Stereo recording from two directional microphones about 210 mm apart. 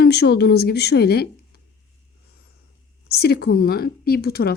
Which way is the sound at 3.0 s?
50° left (ahead or behind).